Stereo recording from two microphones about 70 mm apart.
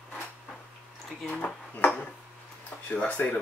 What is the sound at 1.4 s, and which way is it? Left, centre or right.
Speech, centre.